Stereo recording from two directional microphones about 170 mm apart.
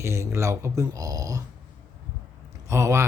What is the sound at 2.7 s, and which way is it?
Speech, 15° right (ahead or behind).